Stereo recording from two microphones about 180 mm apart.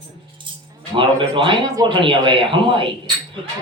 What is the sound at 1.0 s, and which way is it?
A man's voice, 30° right (ahead or behind).